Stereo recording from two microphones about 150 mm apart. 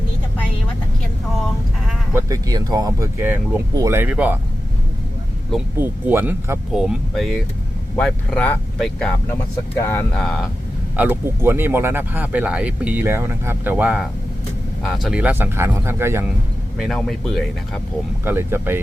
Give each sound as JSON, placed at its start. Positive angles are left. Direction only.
{"t": 2.1, "sound": "speech", "side_deg": -25}
{"t": 5.8, "sound": "speech", "side_deg": -15}
{"t": 6.7, "sound": "speech", "side_deg": 0}
{"t": 10.9, "sound": "speech", "side_deg": -10}
{"t": 16.7, "sound": "speech", "side_deg": 0}
{"t": 18.3, "sound": "speech", "side_deg": -15}